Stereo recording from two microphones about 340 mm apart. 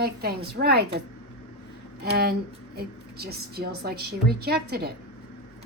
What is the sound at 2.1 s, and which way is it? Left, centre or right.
A woman's voice, right.